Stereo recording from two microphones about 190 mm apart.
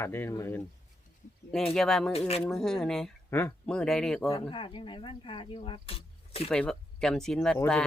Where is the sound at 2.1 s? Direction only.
35° left (ahead or behind).